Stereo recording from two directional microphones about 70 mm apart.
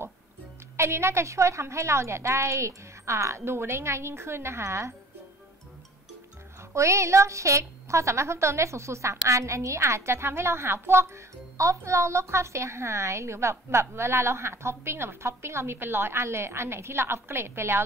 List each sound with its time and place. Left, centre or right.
0.7 s a woman's voice: right
6.7 s a woman's voice: right